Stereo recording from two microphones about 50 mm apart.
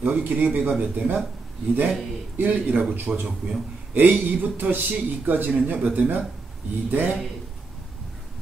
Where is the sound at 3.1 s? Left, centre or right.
Centre.